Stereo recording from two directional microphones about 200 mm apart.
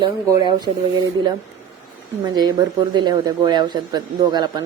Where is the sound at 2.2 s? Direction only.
20° right (ahead or behind).